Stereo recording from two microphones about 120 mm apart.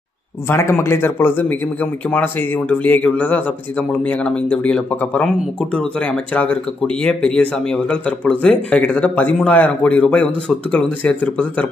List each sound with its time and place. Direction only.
0.5 s speech: 20° left (ahead or behind)
2.8 s speech: 15° left (ahead or behind)
6.3 s speech: 15° left (ahead or behind)